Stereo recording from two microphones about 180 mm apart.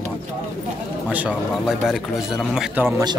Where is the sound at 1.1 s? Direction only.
5° right (ahead or behind).